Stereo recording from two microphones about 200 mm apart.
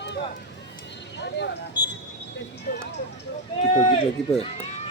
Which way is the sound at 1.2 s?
60° left (ahead or behind).